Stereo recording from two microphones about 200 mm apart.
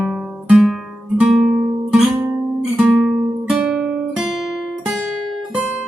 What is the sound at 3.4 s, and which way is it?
Guitar, 5° right (ahead or behind).